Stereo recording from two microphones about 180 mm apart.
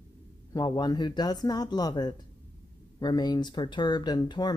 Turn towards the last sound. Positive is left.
turn(degrees=25)  # may be behind; listen again after turning